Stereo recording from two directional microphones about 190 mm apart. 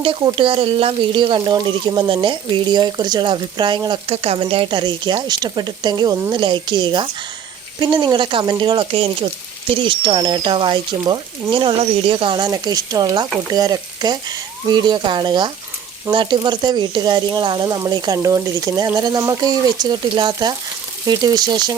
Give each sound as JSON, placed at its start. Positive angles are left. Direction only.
{"t": 0.0, "sound": "speech", "side_deg": -25}